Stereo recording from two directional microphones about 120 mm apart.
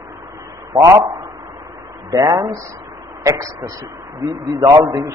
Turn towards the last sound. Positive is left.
turn(degrees=-35)  # may be behind; listen again after turning